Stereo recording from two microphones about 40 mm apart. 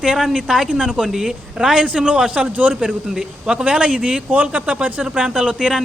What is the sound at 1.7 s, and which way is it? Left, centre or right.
Speech, right.